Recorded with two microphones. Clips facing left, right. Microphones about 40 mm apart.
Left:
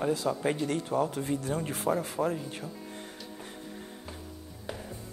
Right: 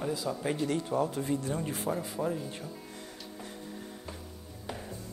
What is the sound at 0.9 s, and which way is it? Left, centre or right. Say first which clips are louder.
Speech: left 2 dB; left.